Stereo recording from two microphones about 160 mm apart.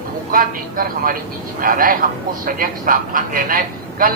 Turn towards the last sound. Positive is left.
turn(degrees=-60)  # may be behind; listen again after turning